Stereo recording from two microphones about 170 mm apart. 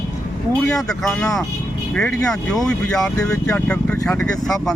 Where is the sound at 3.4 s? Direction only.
5° left (ahead or behind).